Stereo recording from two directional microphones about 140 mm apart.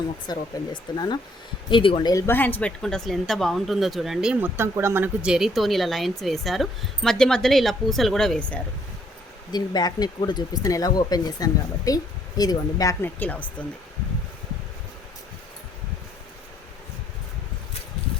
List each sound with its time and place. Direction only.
0.3 s speech: 30° left (ahead or behind)
2.1 s speech: 15° left (ahead or behind)
9.5 s speech: 30° left (ahead or behind)
13.1 s speech: 10° left (ahead or behind)